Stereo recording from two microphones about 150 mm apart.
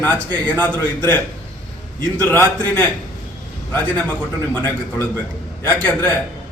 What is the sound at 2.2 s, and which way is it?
A man's voice, 15° left (ahead or behind).